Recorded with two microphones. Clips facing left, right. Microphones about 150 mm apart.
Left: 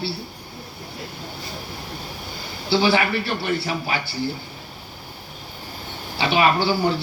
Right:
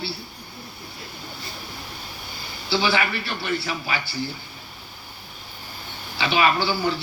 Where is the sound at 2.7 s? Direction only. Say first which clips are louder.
Left 4 dB; 50° left (ahead or behind).